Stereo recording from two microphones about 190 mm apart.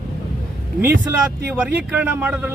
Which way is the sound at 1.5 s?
10° right (ahead or behind).